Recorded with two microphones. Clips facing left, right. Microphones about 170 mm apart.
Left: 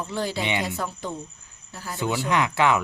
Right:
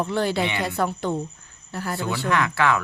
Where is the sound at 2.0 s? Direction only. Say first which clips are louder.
Left 1 dB; 20° left (ahead or behind).